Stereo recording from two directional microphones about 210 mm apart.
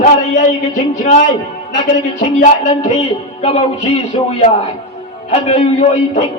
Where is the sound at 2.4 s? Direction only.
35° left (ahead or behind).